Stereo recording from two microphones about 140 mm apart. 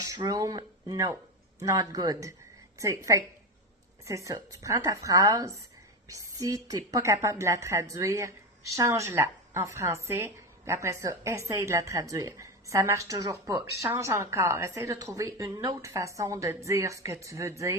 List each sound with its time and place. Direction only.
0.0 s a woman's voice: 25° right (ahead or behind)